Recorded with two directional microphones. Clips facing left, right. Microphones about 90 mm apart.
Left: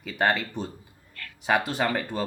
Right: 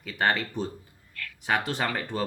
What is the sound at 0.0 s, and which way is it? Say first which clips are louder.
Speech: left 1 dB; 5° left (ahead or behind).